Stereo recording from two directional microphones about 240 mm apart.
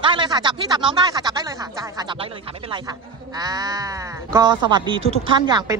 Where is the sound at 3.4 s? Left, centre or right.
Centre.